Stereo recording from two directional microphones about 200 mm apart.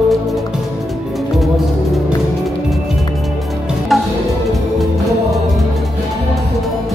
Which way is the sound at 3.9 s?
Centre (ahead or behind).